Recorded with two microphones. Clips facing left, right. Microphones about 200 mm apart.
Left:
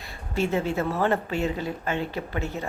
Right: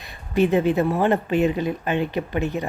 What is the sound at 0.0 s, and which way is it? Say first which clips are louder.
Speech: right 7 dB; 15° right (ahead or behind).